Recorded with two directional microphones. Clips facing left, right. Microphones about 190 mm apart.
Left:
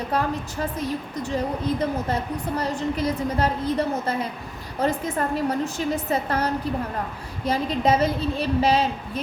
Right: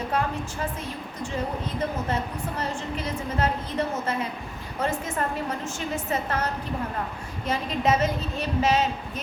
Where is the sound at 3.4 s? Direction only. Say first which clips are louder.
Left 2 dB; 35° left (ahead or behind).